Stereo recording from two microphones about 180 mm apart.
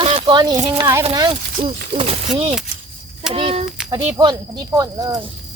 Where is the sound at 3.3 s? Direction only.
30° right (ahead or behind).